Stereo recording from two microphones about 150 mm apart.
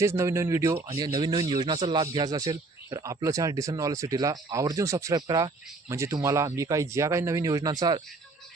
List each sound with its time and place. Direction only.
0.0 s speech: 20° right (ahead or behind)